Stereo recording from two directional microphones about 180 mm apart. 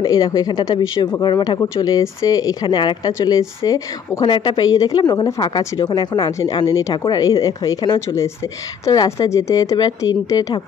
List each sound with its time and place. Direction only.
0.0 s speech: 20° left (ahead or behind)